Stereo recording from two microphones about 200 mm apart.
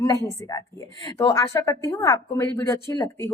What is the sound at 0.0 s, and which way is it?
A woman's voice, 15° left (ahead or behind).